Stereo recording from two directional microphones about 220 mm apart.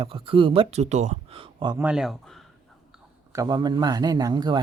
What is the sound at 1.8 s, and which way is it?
Speech, 5° right (ahead or behind).